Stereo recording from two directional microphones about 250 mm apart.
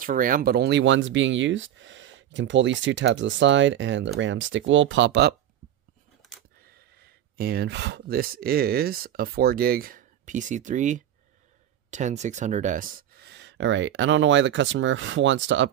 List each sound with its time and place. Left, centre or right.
0.0 s speech: right
7.3 s speech: right